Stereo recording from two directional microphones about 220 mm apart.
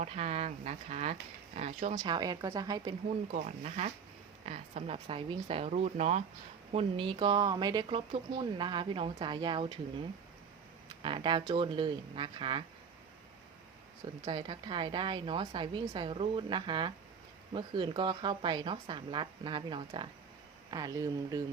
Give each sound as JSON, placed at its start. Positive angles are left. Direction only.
{"t": 0.0, "sound": "speech", "side_deg": -30}
{"t": 3.3, "sound": "speech", "side_deg": -30}
{"t": 10.8, "sound": "speech", "side_deg": -20}
{"t": 14.3, "sound": "speech", "side_deg": -20}